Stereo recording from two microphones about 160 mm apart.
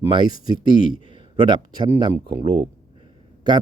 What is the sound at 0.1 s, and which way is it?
Speech, 30° right (ahead or behind).